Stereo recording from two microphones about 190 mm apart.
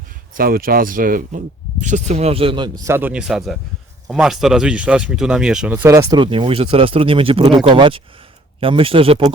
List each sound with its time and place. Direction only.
0.3 s speech: 50° right (ahead or behind); by 9.3 s 30° right (ahead or behind)